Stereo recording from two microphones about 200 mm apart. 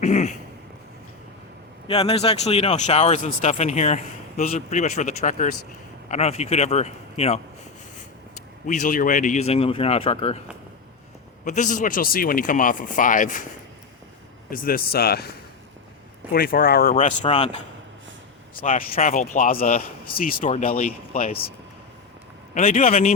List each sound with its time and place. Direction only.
0.0 s a sound: 35° left (ahead or behind)
1.9 s speech: 30° left (ahead or behind)
8.6 s speech: 40° left (ahead or behind)
11.4 s speech: 40° left (ahead or behind)
14.5 s speech: 45° left (ahead or behind)
16.3 s speech: 50° left (ahead or behind)
16.9 s speech: 35° left (ahead or behind)
22.5 s speech: 40° left (ahead or behind)